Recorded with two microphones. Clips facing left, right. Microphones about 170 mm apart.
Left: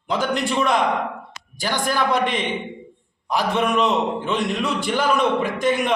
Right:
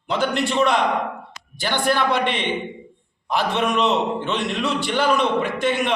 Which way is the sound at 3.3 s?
10° left (ahead or behind).